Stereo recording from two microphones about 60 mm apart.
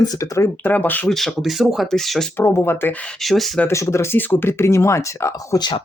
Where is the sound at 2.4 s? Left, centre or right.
Left.